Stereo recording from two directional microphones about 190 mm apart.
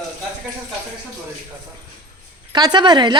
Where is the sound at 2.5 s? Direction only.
20° right (ahead or behind).